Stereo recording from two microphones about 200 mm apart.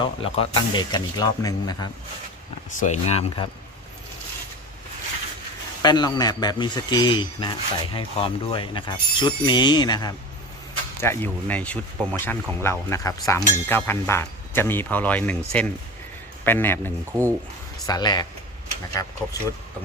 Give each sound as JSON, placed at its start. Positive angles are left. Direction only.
{"t": 0.0, "sound": "speech", "side_deg": 25}
{"t": 2.7, "sound": "speech", "side_deg": 35}
{"t": 5.8, "sound": "speech", "side_deg": 20}
{"t": 17.1, "sound": "speech", "side_deg": -15}
{"t": 17.8, "sound": "speech", "side_deg": 20}